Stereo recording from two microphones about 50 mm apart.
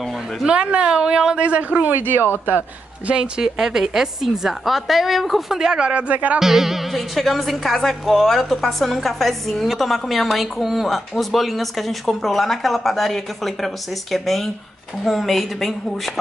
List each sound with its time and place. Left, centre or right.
0.5 s speech: right
3.1 s a woman's voice: centre
5.6 s a woman's voice: centre
6.0 s music: right
6.4 s speech: centre